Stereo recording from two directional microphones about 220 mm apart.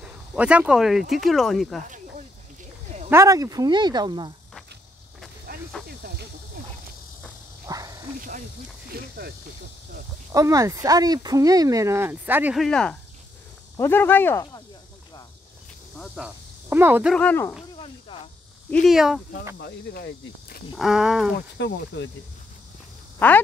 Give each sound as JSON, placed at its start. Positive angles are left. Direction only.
{"t": 0.4, "sound": "speech", "side_deg": -5}
{"t": 3.1, "sound": "speech", "side_deg": -15}
{"t": 5.5, "sound": "snake", "side_deg": -45}
{"t": 7.6, "sound": "a sound", "side_deg": -15}
{"t": 8.9, "sound": "speech", "side_deg": -45}
{"t": 10.3, "sound": "speech", "side_deg": -15}
{"t": 16.0, "sound": "speech", "side_deg": -5}
{"t": 17.1, "sound": "speech", "side_deg": 5}
{"t": 17.7, "sound": "a sound", "side_deg": 25}
{"t": 18.7, "sound": "speech", "side_deg": 0}
{"t": 19.6, "sound": "speech", "side_deg": 45}
{"t": 20.7, "sound": "speech", "side_deg": 0}
{"t": 21.5, "sound": "speech", "side_deg": 55}
{"t": 23.1, "sound": "speech", "side_deg": 10}